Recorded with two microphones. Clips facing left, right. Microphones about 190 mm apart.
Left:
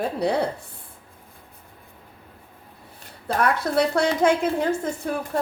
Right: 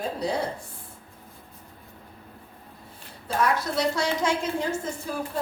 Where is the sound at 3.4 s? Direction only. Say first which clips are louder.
Left 3 dB; 60° left (ahead or behind).